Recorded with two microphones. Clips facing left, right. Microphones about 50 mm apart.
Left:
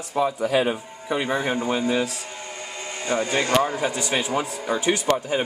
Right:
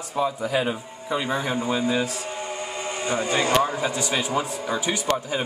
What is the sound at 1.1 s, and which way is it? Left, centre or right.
Speech, left.